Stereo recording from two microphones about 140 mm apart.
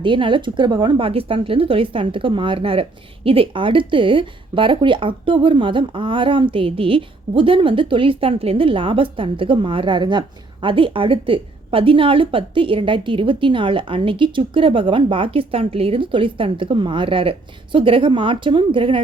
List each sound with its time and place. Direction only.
0.0 s speech: 35° right (ahead or behind)